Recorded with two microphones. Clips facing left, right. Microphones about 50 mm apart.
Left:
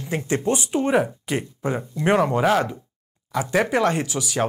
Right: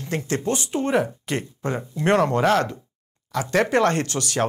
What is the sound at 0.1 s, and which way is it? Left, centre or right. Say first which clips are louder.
Speech: left 2 dB; centre.